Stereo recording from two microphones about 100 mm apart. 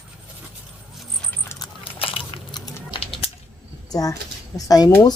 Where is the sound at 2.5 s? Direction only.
55° left (ahead or behind).